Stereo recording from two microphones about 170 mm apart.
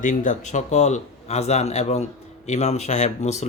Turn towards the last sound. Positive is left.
turn(degrees=45)  # may be behind; listen again after turning